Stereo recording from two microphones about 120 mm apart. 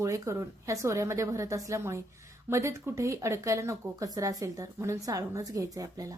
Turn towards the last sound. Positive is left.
turn(degrees=-30)  # may be behind; listen again after turning